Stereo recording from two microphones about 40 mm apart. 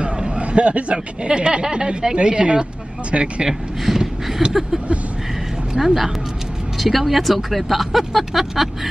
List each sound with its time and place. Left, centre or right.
0.0 s speech: right
3.4 s speech: centre
5.8 s speech: centre